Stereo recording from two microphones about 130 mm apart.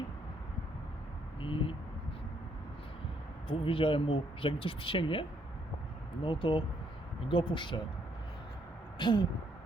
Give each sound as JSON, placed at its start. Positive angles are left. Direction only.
{"t": 1.4, "sound": "vehicle", "side_deg": 45}
{"t": 3.5, "sound": "speech", "side_deg": 45}
{"t": 6.2, "sound": "speech", "side_deg": 40}
{"t": 9.0, "sound": "speech", "side_deg": 35}